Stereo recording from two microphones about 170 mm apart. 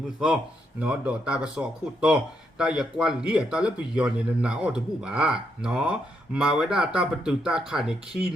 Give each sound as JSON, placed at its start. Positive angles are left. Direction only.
{"t": 0.8, "sound": "a man's voice", "side_deg": -5}